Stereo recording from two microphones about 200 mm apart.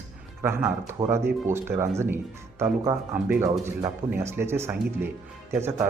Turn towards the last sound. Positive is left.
turn(degrees=-10)  # may be behind; listen again after turning